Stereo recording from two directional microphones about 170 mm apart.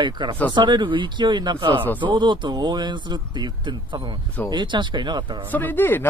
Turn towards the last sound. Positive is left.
turn(degrees=10)  # may be behind; listen again after turning